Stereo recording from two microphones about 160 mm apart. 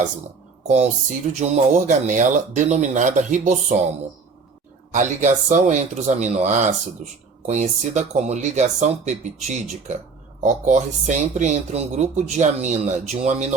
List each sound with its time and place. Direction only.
1.3 s speech: 45° right (ahead or behind)
4.9 s speech: 50° right (ahead or behind)